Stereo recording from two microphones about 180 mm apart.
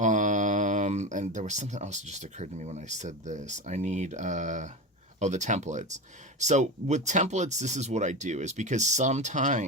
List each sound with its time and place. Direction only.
0.0 s speech: 45° right (ahead or behind)